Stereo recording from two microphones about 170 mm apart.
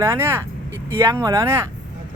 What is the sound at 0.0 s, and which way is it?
Speech, 15° right (ahead or behind).